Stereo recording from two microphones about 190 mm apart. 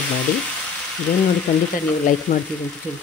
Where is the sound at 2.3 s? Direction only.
40° left (ahead or behind).